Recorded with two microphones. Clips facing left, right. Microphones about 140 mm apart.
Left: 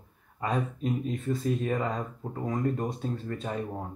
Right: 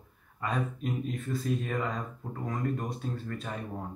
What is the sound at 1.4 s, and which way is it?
Speech, 30° left (ahead or behind).